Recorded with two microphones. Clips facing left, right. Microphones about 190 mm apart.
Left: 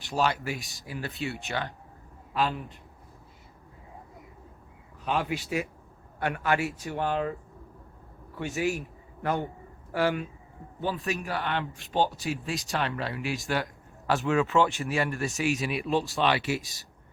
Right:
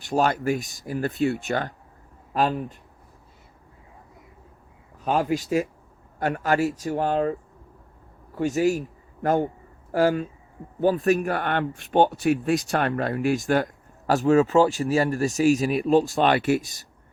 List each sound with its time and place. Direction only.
0.1 s speech: 45° right (ahead or behind)
5.0 s speech: 40° right (ahead or behind)
8.4 s speech: 40° right (ahead or behind)
10.8 s speech: 50° right (ahead or behind)